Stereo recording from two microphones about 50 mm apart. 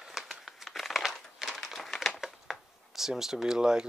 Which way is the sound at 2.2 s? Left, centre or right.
Centre.